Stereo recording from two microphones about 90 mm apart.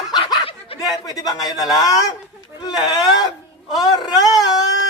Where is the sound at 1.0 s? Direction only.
45° left (ahead or behind).